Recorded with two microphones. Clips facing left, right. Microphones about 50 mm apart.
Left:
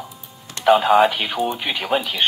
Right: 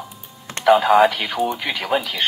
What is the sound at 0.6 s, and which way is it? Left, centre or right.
Speech, centre.